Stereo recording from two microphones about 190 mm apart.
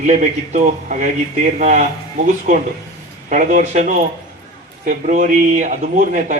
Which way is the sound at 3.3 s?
40° right (ahead or behind).